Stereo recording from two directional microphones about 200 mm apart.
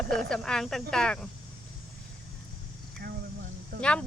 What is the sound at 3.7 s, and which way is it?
Cricket, 50° right (ahead or behind).